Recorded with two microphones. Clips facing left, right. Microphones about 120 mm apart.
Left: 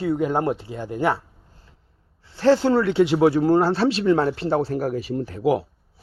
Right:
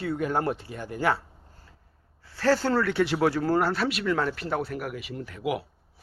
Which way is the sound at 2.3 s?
25° left (ahead or behind).